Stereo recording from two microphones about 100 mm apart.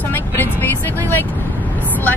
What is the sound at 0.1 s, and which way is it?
Vehicle, 20° left (ahead or behind).